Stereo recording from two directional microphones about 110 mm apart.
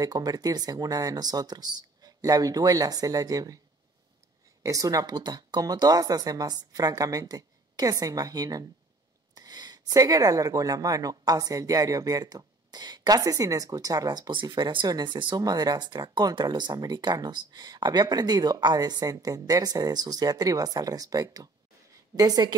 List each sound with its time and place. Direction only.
0.0 s speech: 35° right (ahead or behind)
4.6 s speech: 30° right (ahead or behind)